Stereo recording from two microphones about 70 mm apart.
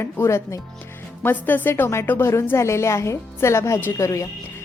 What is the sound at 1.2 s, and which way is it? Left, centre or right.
A woman's voice, left.